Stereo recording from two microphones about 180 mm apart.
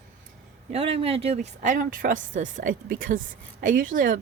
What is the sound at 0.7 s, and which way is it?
Speech, 30° right (ahead or behind).